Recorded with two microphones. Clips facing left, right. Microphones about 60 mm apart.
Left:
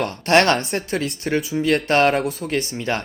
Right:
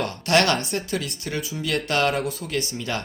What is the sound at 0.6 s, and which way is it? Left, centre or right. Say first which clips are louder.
Speech: left 3 dB; left.